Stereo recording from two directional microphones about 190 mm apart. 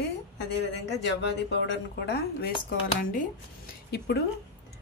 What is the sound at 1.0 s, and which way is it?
Speech, 65° left (ahead or behind).